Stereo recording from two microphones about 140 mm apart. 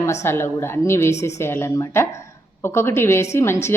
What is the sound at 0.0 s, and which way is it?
A woman's voice, 20° left (ahead or behind).